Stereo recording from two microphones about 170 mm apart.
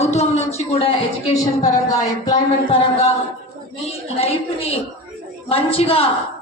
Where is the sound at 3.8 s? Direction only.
35° left (ahead or behind).